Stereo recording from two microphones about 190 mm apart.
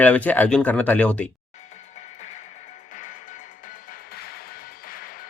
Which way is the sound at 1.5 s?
40° left (ahead or behind).